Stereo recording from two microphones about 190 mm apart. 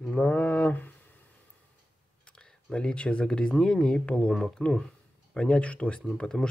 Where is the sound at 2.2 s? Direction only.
5° left (ahead or behind).